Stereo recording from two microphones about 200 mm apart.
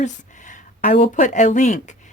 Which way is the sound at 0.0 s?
40° left (ahead or behind).